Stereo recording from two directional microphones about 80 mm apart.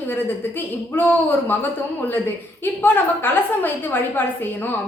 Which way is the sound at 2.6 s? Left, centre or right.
Left.